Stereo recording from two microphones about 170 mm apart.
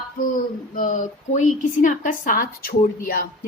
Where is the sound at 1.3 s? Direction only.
45° left (ahead or behind).